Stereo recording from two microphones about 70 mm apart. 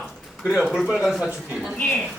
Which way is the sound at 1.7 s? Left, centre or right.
Centre.